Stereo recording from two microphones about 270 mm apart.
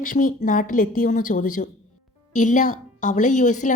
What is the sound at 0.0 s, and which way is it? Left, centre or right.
A woman's voice, left.